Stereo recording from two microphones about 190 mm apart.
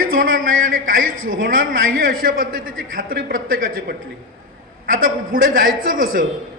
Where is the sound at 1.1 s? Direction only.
90° right.